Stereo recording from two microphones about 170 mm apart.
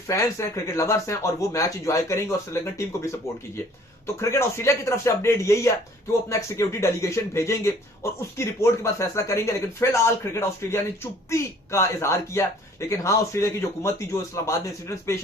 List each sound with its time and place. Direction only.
0.1 s speech: 15° left (ahead or behind)